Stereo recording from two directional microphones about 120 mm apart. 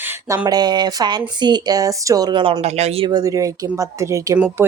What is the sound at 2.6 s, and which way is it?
Speech, 60° right (ahead or behind).